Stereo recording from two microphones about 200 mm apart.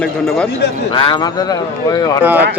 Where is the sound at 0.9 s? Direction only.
25° left (ahead or behind).